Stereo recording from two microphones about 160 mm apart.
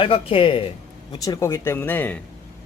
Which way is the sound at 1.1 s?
25° left (ahead or behind).